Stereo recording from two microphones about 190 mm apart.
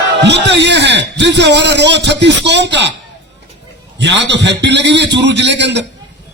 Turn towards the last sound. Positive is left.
turn(degrees=-65)  # may be behind; listen again after turning